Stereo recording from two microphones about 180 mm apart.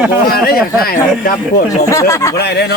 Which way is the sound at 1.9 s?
15° left (ahead or behind).